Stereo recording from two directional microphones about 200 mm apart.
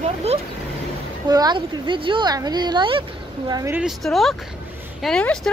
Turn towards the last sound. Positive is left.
turn(degrees=5)  # may be behind; listen again after turning